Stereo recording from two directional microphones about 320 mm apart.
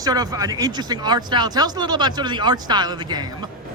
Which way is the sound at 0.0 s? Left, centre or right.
Centre.